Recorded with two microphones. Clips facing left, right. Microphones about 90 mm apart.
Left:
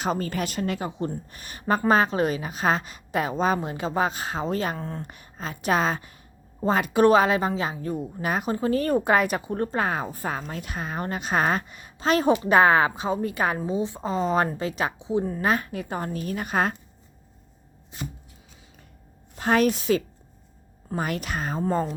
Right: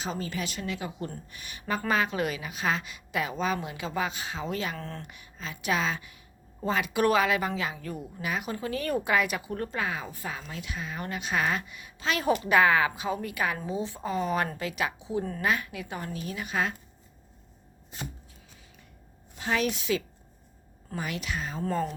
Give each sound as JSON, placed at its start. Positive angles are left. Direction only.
{"t": 0.0, "sound": "a woman's voice", "side_deg": 50}
{"t": 0.9, "sound": "speech", "side_deg": 30}
{"t": 4.8, "sound": "speech", "side_deg": 15}
{"t": 5.0, "sound": "a woman's voice", "side_deg": 40}
{"t": 8.2, "sound": "speech", "side_deg": 40}
{"t": 13.7, "sound": "speech", "side_deg": 20}
{"t": 14.9, "sound": "speech", "side_deg": 20}
{"t": 15.4, "sound": "a woman's voice", "side_deg": 40}
{"t": 19.4, "sound": "a woman's voice", "side_deg": 50}
{"t": 21.7, "sound": "speech", "side_deg": 30}